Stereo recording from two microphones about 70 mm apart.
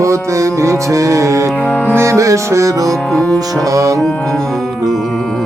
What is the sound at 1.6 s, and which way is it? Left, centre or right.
Music, left.